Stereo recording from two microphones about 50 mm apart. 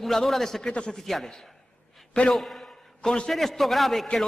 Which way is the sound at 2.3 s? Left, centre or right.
Centre.